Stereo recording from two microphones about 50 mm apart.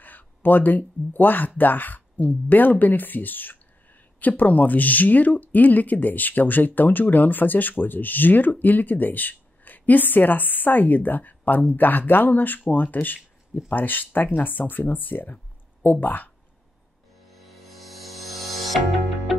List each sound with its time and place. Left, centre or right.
0.0 s speech: left
17.3 s music: centre